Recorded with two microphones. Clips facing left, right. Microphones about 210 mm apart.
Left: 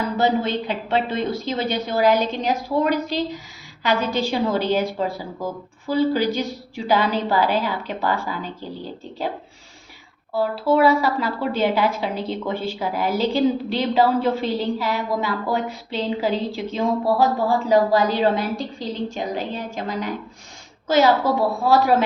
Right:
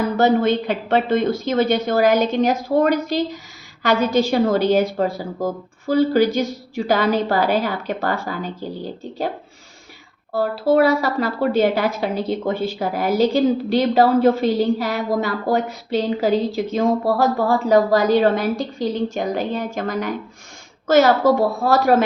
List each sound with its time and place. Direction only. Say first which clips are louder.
0.2 s a woman's voice: right 5 dB; 45° right (ahead or behind)
10.3 s a woman's voice: right 3 dB; 40° right (ahead or behind)